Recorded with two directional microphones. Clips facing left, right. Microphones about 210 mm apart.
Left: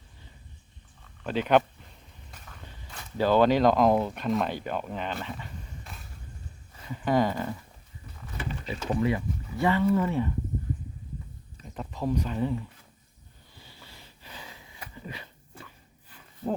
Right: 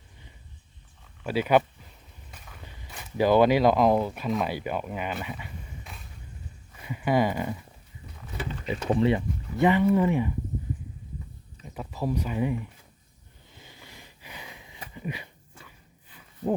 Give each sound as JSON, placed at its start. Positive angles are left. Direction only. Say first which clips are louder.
{"t": 1.2, "sound": "speech", "louder": "right 1 dB", "side_deg": -10}
{"t": 6.8, "sound": "a sound", "louder": "right 1 dB", "side_deg": -10}
{"t": 8.6, "sound": "speech", "louder": "right 4 dB", "side_deg": -25}
{"t": 11.7, "sound": "speech", "louder": "even", "side_deg": -5}
{"t": 13.5, "sound": "sniff", "louder": "right 2 dB", "side_deg": -20}